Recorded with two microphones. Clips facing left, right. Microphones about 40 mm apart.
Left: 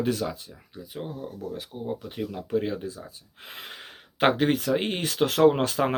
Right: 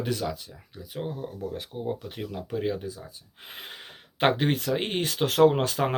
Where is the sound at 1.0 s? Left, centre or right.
Centre.